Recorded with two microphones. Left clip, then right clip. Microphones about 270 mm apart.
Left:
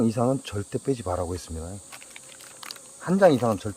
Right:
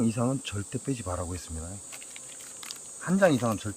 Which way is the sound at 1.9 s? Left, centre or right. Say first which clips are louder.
Even; centre.